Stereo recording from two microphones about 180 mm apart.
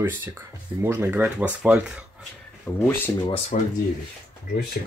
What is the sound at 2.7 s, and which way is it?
Speech, 10° left (ahead or behind).